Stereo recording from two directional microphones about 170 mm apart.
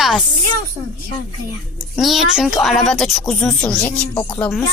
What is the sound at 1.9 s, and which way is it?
Speech, centre (ahead or behind).